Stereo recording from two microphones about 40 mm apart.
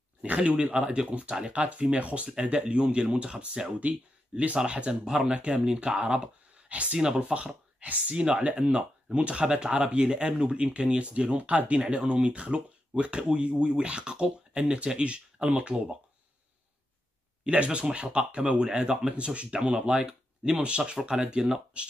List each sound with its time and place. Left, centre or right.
0.2 s speech: right; by 7.5 s centre
7.8 s speech: right
17.5 s speech: right